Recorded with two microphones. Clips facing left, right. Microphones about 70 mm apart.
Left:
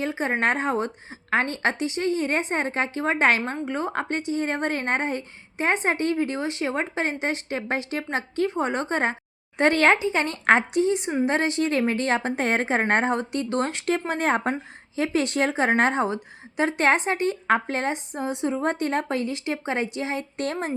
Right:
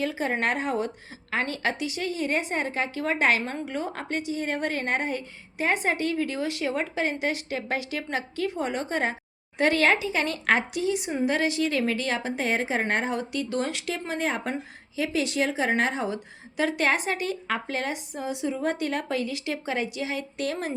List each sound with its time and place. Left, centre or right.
0.0 s a woman's voice: left